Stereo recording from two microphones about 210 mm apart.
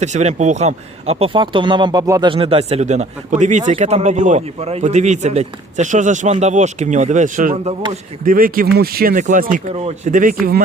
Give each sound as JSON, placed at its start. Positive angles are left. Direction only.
{"t": 0.0, "sound": "a man's voice", "side_deg": -35}
{"t": 8.2, "sound": "a man's voice", "side_deg": -40}